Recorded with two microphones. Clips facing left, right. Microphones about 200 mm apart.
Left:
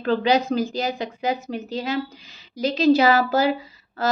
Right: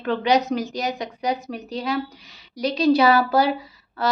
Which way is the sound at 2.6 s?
25° left (ahead or behind).